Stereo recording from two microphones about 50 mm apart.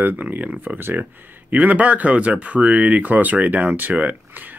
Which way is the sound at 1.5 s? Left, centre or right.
Right.